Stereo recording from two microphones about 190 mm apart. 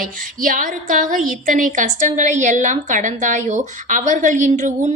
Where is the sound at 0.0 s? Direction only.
45° right (ahead or behind).